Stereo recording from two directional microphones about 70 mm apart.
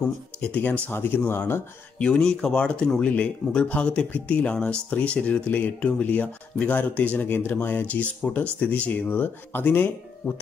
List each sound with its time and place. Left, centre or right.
0.5 s speech: left
2.0 s speech: centre; by 10.3 s left